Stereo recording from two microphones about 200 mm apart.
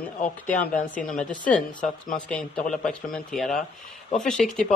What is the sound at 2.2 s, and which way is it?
Speech, 5° left (ahead or behind).